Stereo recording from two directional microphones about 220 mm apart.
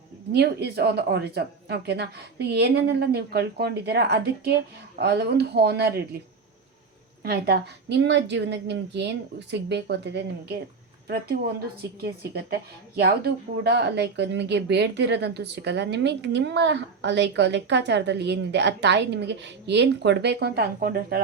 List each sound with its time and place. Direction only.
0.3 s speech: 45° right (ahead or behind)
7.2 s speech: 45° right (ahead or behind)